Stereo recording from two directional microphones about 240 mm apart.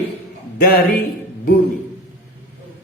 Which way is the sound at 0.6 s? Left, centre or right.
Left.